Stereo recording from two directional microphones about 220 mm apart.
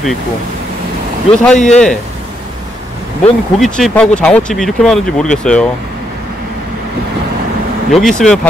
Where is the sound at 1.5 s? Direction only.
30° left (ahead or behind).